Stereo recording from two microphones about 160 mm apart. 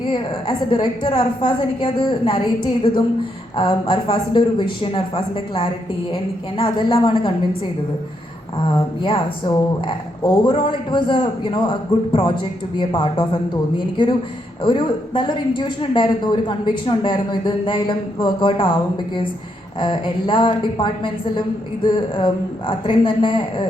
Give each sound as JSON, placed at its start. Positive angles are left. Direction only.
{"t": 0.1, "sound": "a man's voice", "side_deg": 30}
{"t": 8.6, "sound": "a man's voice", "side_deg": 30}
{"t": 19.8, "sound": "a man's voice", "side_deg": 30}